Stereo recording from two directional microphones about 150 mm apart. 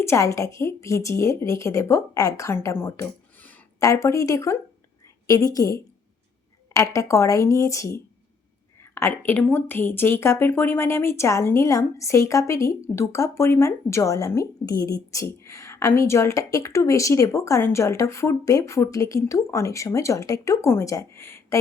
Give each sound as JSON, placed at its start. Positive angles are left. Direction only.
{"t": 0.0, "sound": "a woman's voice", "side_deg": 20}